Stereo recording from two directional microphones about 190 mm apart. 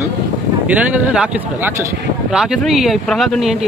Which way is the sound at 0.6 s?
5° right (ahead or behind).